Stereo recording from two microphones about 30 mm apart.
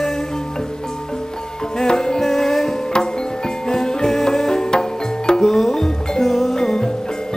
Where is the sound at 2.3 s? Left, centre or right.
Centre.